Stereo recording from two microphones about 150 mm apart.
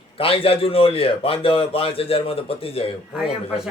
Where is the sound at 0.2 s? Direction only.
40° left (ahead or behind).